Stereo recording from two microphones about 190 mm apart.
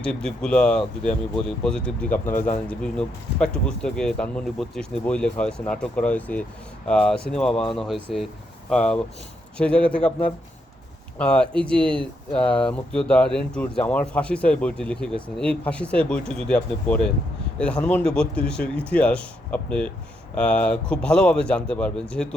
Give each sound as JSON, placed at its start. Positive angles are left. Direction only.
{"t": 0.0, "sound": "speech", "side_deg": 5}